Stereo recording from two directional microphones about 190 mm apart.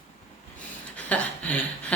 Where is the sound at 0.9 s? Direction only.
10° left (ahead or behind).